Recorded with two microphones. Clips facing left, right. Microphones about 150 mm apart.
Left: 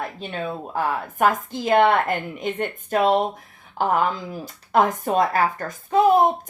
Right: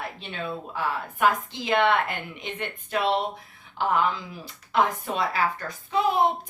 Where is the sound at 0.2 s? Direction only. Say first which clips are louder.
Left 4 dB; 45° left (ahead or behind).